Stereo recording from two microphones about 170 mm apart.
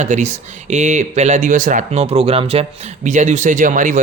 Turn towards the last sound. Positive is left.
turn(degrees=-50)  # may be behind; listen again after turning